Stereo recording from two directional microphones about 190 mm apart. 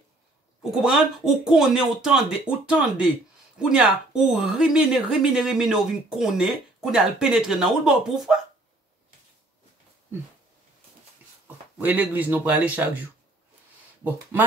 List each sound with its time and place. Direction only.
0.6 s a woman's voice: 5° right (ahead or behind)
11.4 s speech: 10° right (ahead or behind)
14.0 s speech: 10° right (ahead or behind)